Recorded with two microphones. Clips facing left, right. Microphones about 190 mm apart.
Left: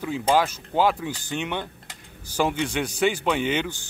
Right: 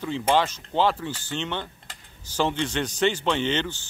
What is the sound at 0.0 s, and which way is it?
Speech, 5° left (ahead or behind).